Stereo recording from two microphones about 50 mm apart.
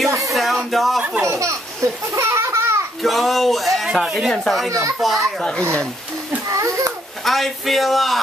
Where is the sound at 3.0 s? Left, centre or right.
Centre.